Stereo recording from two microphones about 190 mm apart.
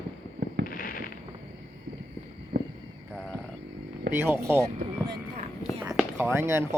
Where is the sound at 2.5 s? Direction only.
55° right (ahead or behind).